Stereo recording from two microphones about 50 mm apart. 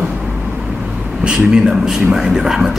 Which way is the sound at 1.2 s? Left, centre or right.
Right.